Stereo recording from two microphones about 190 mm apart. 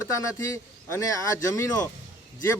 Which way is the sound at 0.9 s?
15° left (ahead or behind).